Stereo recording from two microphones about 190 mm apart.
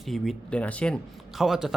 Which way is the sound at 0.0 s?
Centre (ahead or behind).